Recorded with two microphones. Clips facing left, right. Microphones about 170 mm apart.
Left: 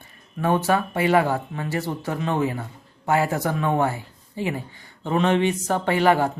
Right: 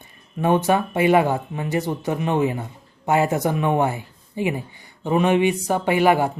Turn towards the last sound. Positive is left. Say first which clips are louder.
# right 2 dB
turn(degrees=-15)  # may be behind; listen again after turning